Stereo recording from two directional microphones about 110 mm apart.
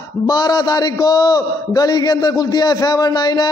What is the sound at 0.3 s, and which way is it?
A man's voice, 40° left (ahead or behind).